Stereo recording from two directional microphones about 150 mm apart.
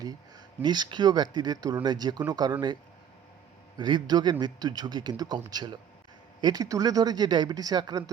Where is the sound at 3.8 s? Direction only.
30° right (ahead or behind).